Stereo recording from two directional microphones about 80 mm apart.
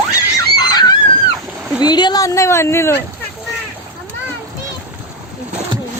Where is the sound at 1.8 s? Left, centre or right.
Left.